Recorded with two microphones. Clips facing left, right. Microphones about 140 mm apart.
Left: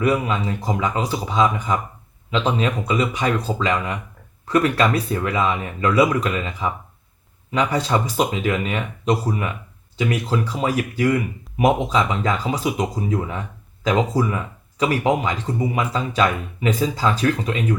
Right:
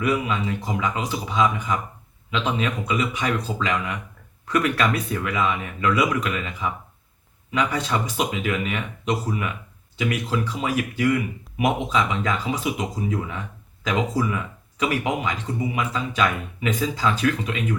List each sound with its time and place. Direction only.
0.0 s speech: 35° left (ahead or behind)